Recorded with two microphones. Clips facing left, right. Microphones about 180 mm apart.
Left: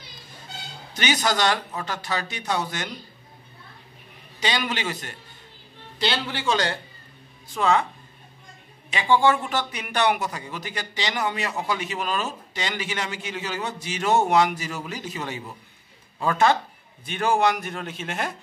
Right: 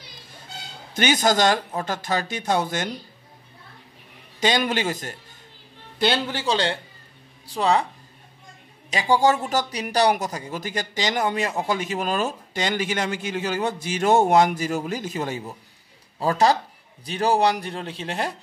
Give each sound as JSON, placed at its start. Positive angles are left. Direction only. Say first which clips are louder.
{"t": 0.9, "sound": "speech", "louder": "right 4 dB", "side_deg": -50}
{"t": 4.4, "sound": "speech", "louder": "right 5 dB", "side_deg": -45}
{"t": 6.5, "sound": "a man's voice", "louder": "right 1 dB", "side_deg": -25}
{"t": 8.9, "sound": "speech", "louder": "right 1 dB", "side_deg": -40}